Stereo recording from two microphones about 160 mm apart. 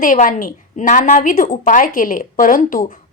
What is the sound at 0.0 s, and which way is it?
A woman's voice, 55° left (ahead or behind).